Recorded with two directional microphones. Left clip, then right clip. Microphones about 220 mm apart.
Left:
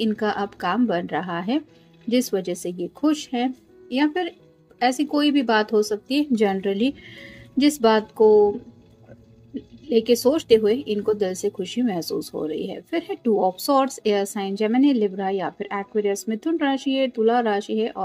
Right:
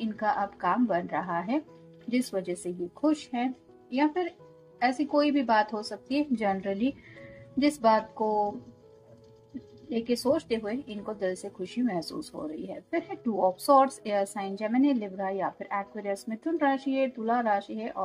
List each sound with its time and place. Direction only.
0.0 s speech: 45° left (ahead or behind)
9.8 s speech: 45° left (ahead or behind)